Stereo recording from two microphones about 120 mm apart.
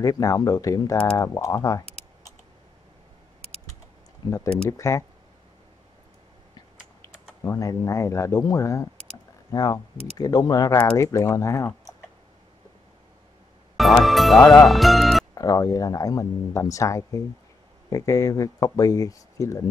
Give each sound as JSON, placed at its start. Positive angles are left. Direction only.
{"t": 0.0, "sound": "speech", "side_deg": 30}
{"t": 4.2, "sound": "speech", "side_deg": 35}
{"t": 4.6, "sound": "speech", "side_deg": 25}
{"t": 7.4, "sound": "speech", "side_deg": 30}
{"t": 13.7, "sound": "speech", "side_deg": 0}
{"t": 15.3, "sound": "speech", "side_deg": 30}